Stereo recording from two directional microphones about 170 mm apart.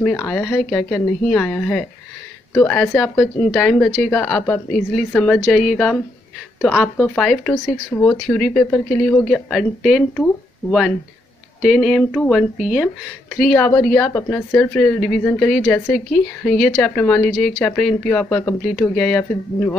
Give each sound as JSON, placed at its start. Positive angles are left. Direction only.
{"t": 0.0, "sound": "a woman's voice", "side_deg": 5}
{"t": 7.9, "sound": "a woman's voice", "side_deg": 15}
{"t": 9.3, "sound": "speech", "side_deg": 0}
{"t": 11.6, "sound": "speech", "side_deg": -5}
{"t": 13.5, "sound": "a woman's voice", "side_deg": 10}